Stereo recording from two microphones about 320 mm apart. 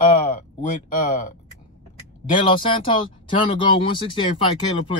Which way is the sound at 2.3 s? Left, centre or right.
Centre.